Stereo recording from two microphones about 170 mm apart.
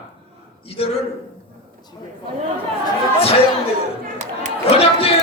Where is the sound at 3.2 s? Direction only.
35° left (ahead or behind).